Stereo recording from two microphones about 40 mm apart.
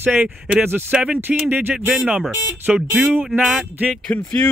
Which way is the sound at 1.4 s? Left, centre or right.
Right.